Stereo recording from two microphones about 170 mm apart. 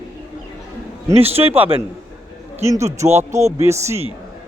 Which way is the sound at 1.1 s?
35° right (ahead or behind).